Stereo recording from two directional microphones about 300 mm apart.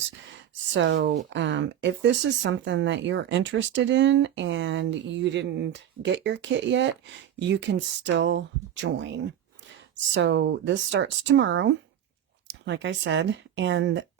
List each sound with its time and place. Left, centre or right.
0.8 s speech: right